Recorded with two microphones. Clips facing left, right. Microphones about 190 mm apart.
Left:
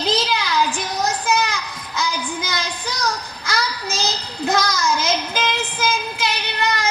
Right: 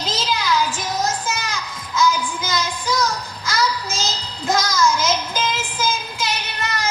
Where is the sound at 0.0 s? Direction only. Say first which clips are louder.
Left 3 dB; 60° left (ahead or behind).